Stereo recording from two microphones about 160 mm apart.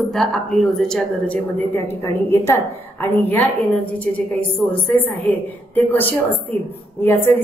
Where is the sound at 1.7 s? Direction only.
15° left (ahead or behind).